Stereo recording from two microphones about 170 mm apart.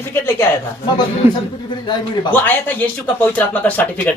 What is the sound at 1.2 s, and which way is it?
Speech, 15° right (ahead or behind).